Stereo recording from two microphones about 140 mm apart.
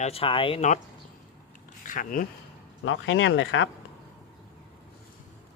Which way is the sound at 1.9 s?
75° left (ahead or behind).